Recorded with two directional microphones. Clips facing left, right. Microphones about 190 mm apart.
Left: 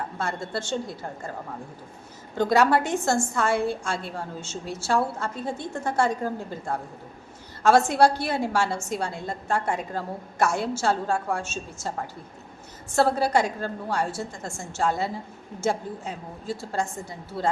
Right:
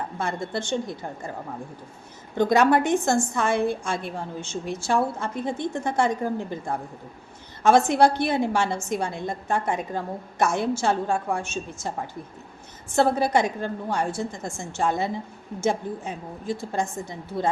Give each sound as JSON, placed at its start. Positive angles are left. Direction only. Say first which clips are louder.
{"t": 0.2, "sound": "a woman's voice", "louder": "right 2 dB", "side_deg": -20}
{"t": 2.4, "sound": "a woman's voice", "louder": "right 2 dB", "side_deg": -20}
{"t": 12.9, "sound": "a woman's voice", "louder": "right 1 dB", "side_deg": -20}